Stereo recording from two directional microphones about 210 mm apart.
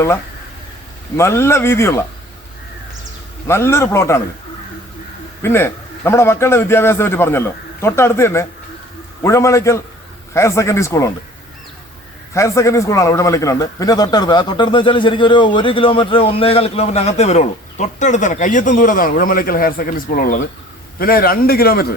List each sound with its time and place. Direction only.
1.1 s a man's voice: 10° left (ahead or behind)
3.4 s a man's voice: 10° left (ahead or behind)
5.4 s a man's voice: 10° left (ahead or behind)
12.3 s a man's voice: 15° left (ahead or behind); by 21.9 s 45° left (ahead or behind)